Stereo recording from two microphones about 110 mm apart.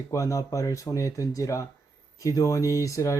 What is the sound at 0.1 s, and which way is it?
Speech, 30° left (ahead or behind).